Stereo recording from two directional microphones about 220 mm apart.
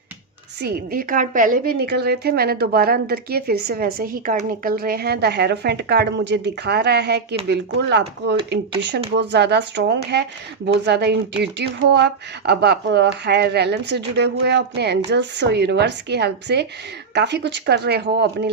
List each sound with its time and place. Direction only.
0.6 s a woman's voice: 40° right (ahead or behind)